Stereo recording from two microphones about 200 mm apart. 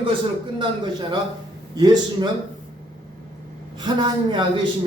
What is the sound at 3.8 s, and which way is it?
Speech, 20° right (ahead or behind).